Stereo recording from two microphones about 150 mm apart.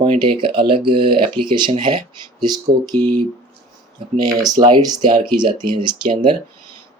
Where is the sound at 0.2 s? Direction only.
35° right (ahead or behind).